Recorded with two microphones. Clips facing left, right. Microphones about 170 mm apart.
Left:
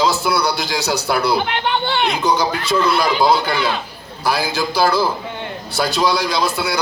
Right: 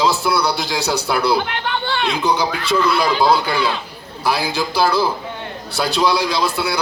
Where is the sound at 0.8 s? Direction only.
30° right (ahead or behind).